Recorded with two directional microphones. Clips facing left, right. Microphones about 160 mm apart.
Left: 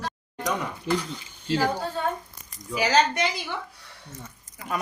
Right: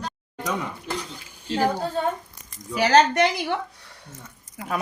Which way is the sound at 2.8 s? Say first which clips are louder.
Right 5 dB; 60° right (ahead or behind).